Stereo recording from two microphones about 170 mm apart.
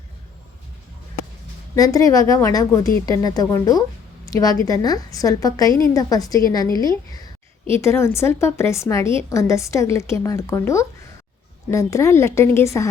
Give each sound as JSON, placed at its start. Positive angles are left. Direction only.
{"t": 1.7, "sound": "a woman's voice", "side_deg": 20}